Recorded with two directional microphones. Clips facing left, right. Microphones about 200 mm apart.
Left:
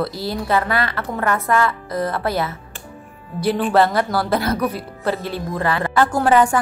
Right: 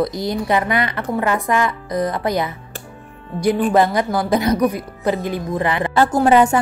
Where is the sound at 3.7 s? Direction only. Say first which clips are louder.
Right 1 dB; 15° right (ahead or behind).